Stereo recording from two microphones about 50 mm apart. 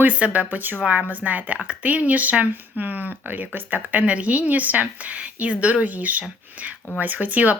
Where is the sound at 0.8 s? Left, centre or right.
Right.